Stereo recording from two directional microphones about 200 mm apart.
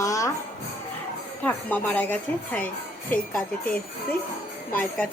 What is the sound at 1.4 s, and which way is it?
Speech, 5° left (ahead or behind).